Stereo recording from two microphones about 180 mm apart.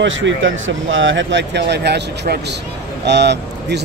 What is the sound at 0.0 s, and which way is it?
A man's voice, 90° right.